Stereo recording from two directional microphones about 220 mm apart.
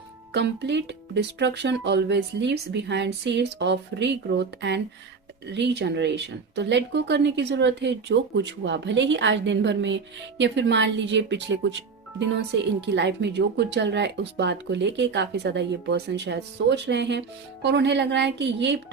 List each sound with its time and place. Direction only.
0.3 s a woman's voice: 50° right (ahead or behind)